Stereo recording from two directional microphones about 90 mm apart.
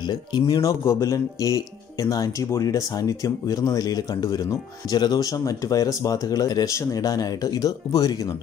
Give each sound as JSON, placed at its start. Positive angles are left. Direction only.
{"t": 0.0, "sound": "speech", "side_deg": 55}
{"t": 0.6, "sound": "speech", "side_deg": 35}